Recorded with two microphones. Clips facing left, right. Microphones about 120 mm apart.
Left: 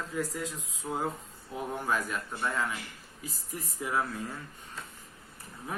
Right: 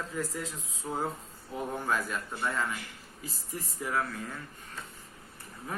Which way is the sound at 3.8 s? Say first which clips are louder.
Left 1 dB; 15° left (ahead or behind).